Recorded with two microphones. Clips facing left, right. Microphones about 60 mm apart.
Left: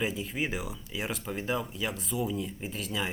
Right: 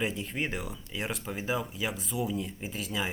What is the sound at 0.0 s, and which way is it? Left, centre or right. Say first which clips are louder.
Speech: left 1 dB; centre.